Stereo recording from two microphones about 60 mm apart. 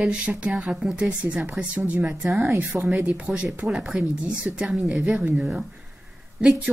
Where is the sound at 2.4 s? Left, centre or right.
Right.